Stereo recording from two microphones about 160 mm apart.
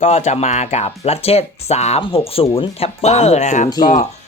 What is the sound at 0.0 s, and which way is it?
Speech, 45° left (ahead or behind).